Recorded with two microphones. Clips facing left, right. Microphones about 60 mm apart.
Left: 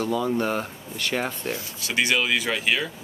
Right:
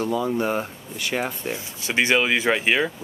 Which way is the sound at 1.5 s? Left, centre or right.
Right.